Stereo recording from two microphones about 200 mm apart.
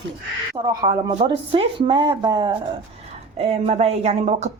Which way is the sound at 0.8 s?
20° right (ahead or behind).